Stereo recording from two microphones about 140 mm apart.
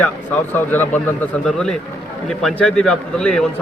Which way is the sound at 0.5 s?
15° left (ahead or behind).